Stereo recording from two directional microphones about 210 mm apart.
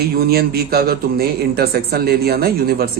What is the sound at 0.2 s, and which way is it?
A man's voice, 45° right (ahead or behind).